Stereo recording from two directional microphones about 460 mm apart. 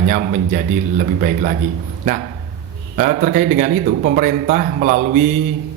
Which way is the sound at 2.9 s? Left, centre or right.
Centre.